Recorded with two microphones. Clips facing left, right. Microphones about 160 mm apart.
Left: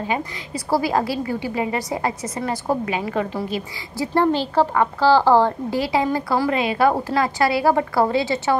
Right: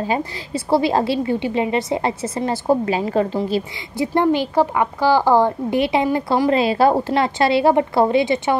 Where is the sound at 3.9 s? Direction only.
15° right (ahead or behind).